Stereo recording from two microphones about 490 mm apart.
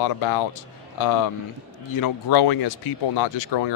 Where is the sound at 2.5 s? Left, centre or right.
Left.